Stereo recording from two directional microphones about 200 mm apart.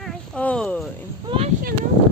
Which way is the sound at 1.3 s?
30° right (ahead or behind).